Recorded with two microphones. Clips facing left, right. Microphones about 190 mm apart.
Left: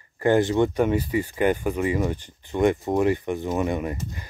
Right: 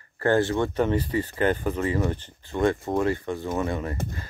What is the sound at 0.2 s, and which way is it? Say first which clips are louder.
Speech: left 3 dB; 15° left (ahead or behind).